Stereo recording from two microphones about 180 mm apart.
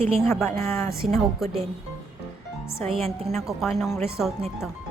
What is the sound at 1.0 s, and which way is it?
Speech, centre (ahead or behind).